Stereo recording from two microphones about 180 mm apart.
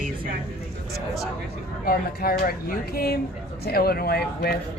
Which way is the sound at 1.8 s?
55° left (ahead or behind).